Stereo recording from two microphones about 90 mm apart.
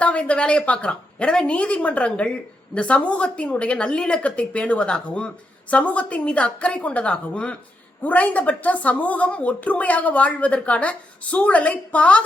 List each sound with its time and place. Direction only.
0.0 s a woman's voice: 15° left (ahead or behind)